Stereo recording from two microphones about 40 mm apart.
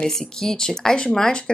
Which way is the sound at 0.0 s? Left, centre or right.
Centre.